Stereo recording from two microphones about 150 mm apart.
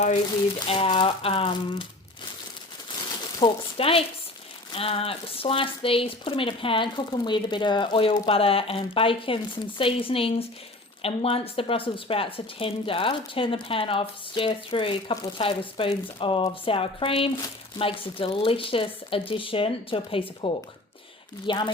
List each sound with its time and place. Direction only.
0.7 s speech: 35° left (ahead or behind)
3.4 s speech: 40° left (ahead or behind)